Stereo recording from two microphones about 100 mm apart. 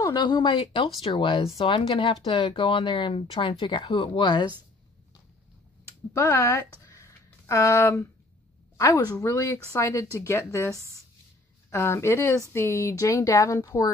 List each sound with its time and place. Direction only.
0.0 s speech: 45° left (ahead or behind)
1.4 s speech: 70° left (ahead or behind); by 4.5 s 50° left (ahead or behind)
6.1 s a woman's voice: 30° left (ahead or behind)